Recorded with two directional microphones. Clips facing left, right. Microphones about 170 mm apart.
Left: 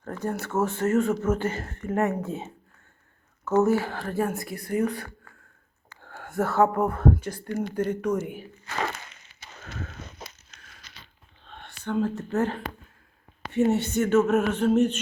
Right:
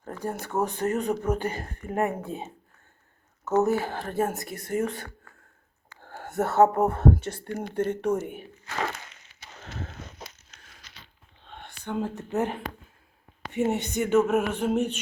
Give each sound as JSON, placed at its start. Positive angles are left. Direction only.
{"t": 0.0, "sound": "speech", "side_deg": -15}
{"t": 6.0, "sound": "whispering", "side_deg": -40}
{"t": 6.3, "sound": "speech", "side_deg": -20}
{"t": 11.4, "sound": "whispering", "side_deg": -15}
{"t": 13.5, "sound": "speech", "side_deg": -15}